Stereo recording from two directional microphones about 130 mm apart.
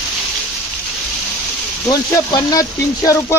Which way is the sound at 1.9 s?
30° left (ahead or behind).